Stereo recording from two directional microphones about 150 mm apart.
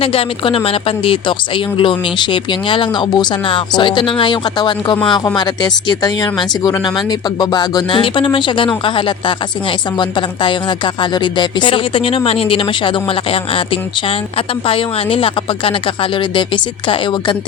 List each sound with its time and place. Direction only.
0.0 s speech: 40° left (ahead or behind)
14.7 s speech: 40° left (ahead or behind)